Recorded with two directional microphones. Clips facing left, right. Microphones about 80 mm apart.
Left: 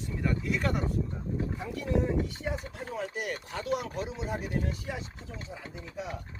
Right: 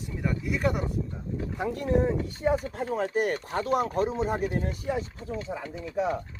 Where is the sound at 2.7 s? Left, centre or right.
Right.